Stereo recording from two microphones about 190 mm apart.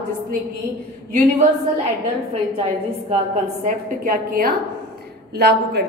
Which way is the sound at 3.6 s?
45° right (ahead or behind).